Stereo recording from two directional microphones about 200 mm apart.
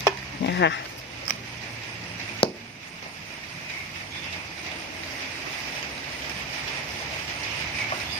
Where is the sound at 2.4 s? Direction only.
25° left (ahead or behind).